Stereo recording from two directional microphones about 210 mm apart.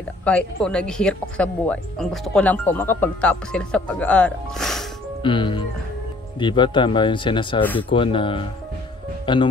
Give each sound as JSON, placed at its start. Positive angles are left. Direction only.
{"t": 0.2, "sound": "speech", "side_deg": 5}
{"t": 5.2, "sound": "speech", "side_deg": 20}